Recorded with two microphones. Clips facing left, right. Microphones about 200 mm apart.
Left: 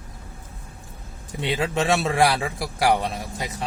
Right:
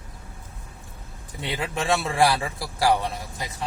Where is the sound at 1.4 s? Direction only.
25° left (ahead or behind).